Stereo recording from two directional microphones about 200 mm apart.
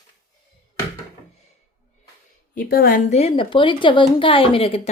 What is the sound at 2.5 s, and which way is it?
A woman's voice, 45° left (ahead or behind).